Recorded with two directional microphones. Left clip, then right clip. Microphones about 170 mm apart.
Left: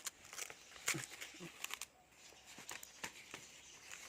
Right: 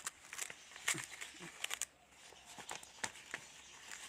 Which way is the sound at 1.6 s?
5° right (ahead or behind).